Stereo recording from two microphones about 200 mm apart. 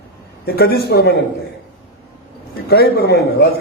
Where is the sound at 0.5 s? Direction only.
55° left (ahead or behind).